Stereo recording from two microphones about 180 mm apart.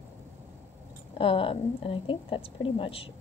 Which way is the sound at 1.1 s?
30° left (ahead or behind).